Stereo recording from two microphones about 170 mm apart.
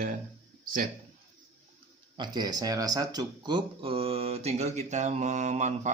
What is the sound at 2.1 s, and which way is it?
Speech, 25° right (ahead or behind).